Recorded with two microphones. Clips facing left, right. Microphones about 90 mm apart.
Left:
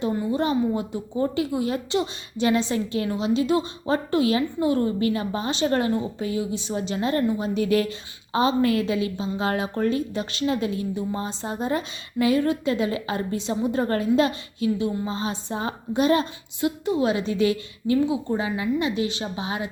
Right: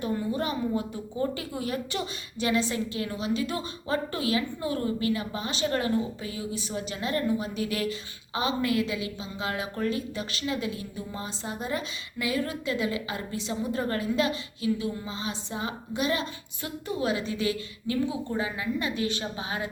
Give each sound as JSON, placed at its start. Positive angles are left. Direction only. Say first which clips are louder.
{"t": 0.0, "sound": "a woman's voice", "louder": "left 5 dB", "side_deg": 25}
{"t": 16.6, "sound": "a woman's voice", "louder": "left 9 dB", "side_deg": 20}
{"t": 18.0, "sound": "speech", "louder": "left 6 dB", "side_deg": 15}
{"t": 18.3, "sound": "a woman's voice", "louder": "left 5 dB", "side_deg": 25}